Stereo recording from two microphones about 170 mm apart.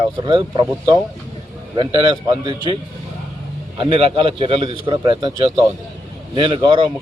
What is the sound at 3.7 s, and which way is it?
Speech, 30° right (ahead or behind).